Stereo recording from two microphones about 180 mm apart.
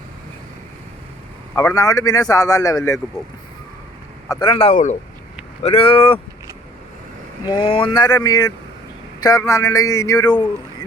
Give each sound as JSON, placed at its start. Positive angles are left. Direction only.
{"t": 1.5, "sound": "a man's voice", "side_deg": 20}
{"t": 4.3, "sound": "speech", "side_deg": 25}
{"t": 5.6, "sound": "speech", "side_deg": 30}
{"t": 7.4, "sound": "a man's voice", "side_deg": 30}